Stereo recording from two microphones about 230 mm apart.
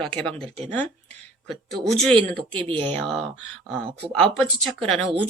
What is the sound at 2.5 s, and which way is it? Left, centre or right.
Speech, right.